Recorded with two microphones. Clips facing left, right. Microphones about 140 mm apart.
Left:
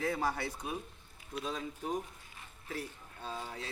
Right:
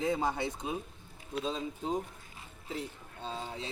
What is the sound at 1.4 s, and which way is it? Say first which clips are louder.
Speech: right 3 dB; 25° right (ahead or behind).